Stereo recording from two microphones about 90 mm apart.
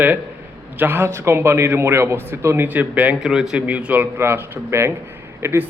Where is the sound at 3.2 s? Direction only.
5° right (ahead or behind).